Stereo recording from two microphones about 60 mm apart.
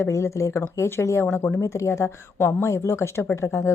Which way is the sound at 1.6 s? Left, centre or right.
Left.